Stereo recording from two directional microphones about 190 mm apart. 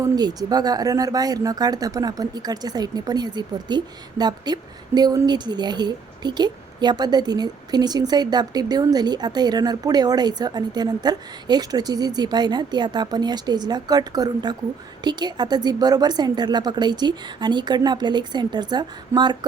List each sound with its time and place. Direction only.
0.0 s speech: 20° right (ahead or behind)